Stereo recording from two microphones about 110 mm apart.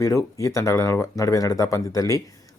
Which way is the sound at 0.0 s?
30° left (ahead or behind).